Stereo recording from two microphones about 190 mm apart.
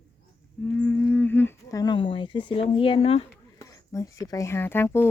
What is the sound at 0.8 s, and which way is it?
Speech, 10° left (ahead or behind).